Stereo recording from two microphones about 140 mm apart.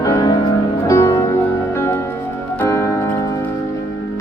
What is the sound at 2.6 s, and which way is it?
Music, 20° left (ahead or behind).